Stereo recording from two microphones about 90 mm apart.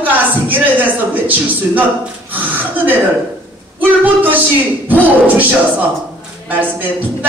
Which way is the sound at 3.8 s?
20° right (ahead or behind).